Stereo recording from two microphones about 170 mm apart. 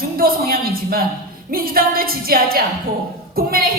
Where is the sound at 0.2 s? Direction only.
60° right (ahead or behind).